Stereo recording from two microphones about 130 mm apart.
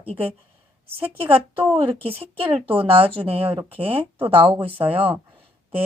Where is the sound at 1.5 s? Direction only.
40° right (ahead or behind).